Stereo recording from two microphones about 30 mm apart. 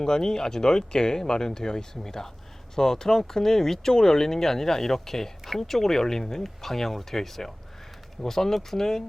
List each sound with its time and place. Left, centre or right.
0.0 s speech: centre